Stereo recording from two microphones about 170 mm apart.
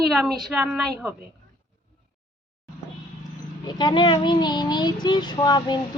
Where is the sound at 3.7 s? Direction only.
25° left (ahead or behind).